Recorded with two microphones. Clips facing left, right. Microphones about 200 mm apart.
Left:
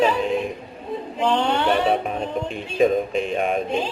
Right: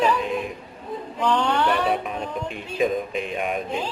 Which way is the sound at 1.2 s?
25° left (ahead or behind).